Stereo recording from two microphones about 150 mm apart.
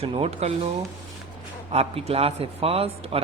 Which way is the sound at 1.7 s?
45° right (ahead or behind).